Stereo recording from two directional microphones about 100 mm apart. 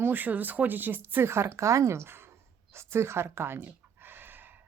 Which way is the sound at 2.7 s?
25° right (ahead or behind).